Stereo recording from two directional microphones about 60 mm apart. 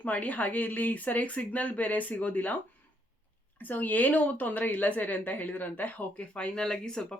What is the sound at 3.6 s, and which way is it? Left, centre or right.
Speech, left.